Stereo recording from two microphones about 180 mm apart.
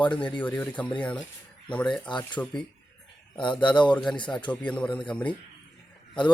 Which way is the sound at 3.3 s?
25° left (ahead or behind).